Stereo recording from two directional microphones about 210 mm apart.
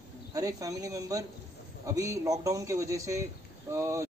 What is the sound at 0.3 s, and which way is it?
Speech, 15° right (ahead or behind).